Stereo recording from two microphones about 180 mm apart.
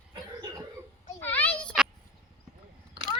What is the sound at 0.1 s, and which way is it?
Cough, 20° right (ahead or behind).